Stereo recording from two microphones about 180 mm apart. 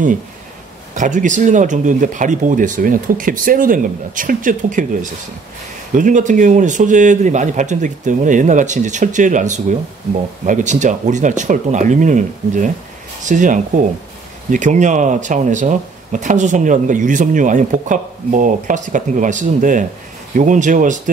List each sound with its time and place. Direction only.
0.9 s speech: 45° right (ahead or behind)